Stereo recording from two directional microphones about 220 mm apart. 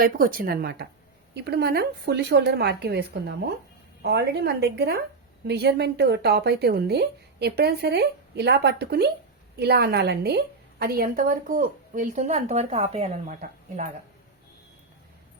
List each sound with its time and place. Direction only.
0.0 s a woman's voice: 40° right (ahead or behind)